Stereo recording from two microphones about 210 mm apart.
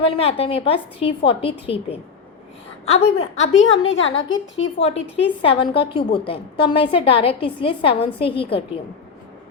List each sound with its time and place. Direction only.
0.0 s a woman's voice: 25° left (ahead or behind)
3.6 s a woman's voice: 65° left (ahead or behind)
4.8 s a woman's voice: 25° left (ahead or behind)